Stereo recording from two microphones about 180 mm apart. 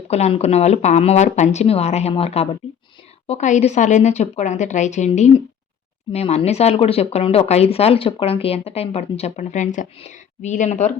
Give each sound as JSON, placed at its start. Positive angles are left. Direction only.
{"t": 0.1, "sound": "speech", "side_deg": 35}